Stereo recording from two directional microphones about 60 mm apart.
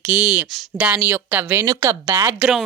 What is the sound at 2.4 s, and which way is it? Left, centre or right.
Speech, right.